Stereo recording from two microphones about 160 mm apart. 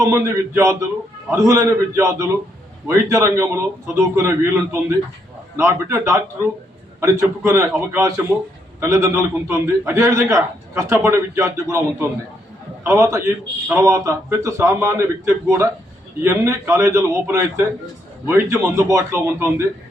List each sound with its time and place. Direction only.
0.0 s a man's voice: 20° right (ahead or behind)